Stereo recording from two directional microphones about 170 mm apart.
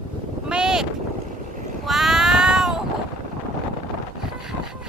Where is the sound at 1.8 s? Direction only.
Centre (ahead or behind).